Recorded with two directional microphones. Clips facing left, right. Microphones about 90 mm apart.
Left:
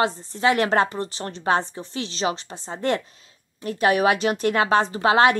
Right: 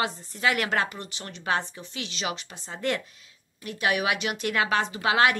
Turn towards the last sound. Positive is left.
turn(degrees=35)  # may be behind; listen again after turning